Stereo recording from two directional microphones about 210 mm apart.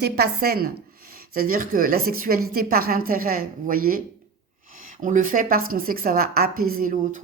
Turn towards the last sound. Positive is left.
turn(degrees=-40)  # may be behind; listen again after turning